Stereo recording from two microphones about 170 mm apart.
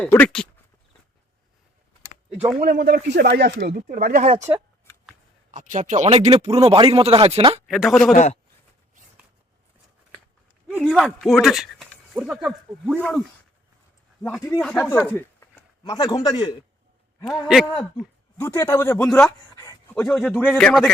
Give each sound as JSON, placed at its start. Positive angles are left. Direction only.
{"t": 0.0, "sound": "speech", "side_deg": 10}
{"t": 2.6, "sound": "speech", "side_deg": -65}
{"t": 3.8, "sound": "speech", "side_deg": -50}
{"t": 5.5, "sound": "a man's voice", "side_deg": -50}
{"t": 7.7, "sound": "speech", "side_deg": 0}
{"t": 8.1, "sound": "a man's voice", "side_deg": 45}
{"t": 10.8, "sound": "speech", "side_deg": -5}
{"t": 13.0, "sound": "speech", "side_deg": 10}
{"t": 14.6, "sound": "speech", "side_deg": 10}
{"t": 17.5, "sound": "speech", "side_deg": 0}
{"t": 18.3, "sound": "speech", "side_deg": 15}